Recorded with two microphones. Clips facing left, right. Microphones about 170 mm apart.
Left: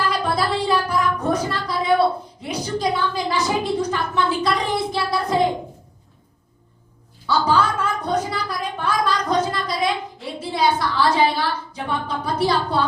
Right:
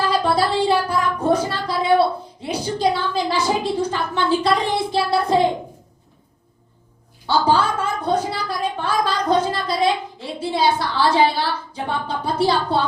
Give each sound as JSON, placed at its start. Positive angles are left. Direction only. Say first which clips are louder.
{"t": 0.1, "sound": "music", "louder": "right 3 dB", "side_deg": -30}
{"t": 2.4, "sound": "a woman's voice", "louder": "right 3 dB", "side_deg": -30}
{"t": 7.3, "sound": "a woman's voice", "louder": "right 1 dB", "side_deg": -30}